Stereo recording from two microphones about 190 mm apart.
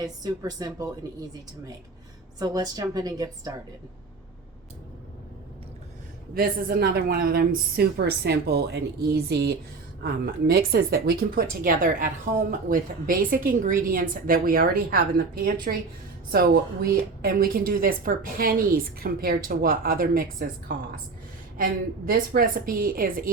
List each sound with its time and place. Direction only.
0.0 s a woman's voice: 20° right (ahead or behind)
2.4 s a woman's voice: 20° right (ahead or behind)
6.3 s a woman's voice: 50° right (ahead or behind)